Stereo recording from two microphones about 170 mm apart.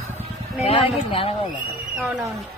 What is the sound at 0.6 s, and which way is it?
Speech, 35° left (ahead or behind).